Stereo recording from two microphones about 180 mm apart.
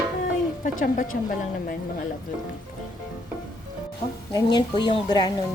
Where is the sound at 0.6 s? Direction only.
50° left (ahead or behind).